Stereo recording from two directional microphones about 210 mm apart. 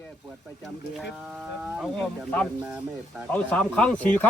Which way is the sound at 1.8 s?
Centre (ahead or behind).